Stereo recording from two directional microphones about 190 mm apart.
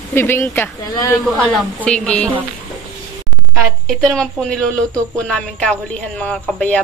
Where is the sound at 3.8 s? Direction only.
Centre (ahead or behind).